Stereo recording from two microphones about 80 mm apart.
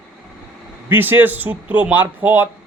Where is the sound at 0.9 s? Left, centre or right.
Right.